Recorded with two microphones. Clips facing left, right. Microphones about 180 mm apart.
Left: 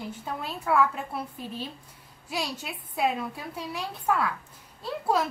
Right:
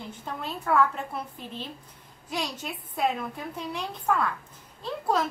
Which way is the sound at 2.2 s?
5° left (ahead or behind).